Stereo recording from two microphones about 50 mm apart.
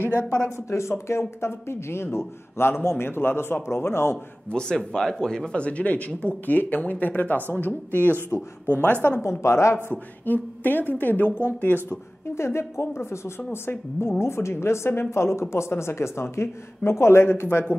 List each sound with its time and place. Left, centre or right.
0.0 s a sound: left
0.7 s a woman's voice: left
4.5 s a woman's voice: centre; by 8.1 s left
8.3 s speech: left
8.6 s a woman's voice: left
9.2 s a woman's voice: left
9.8 s a woman's voice: left
11.9 s a man's voice: left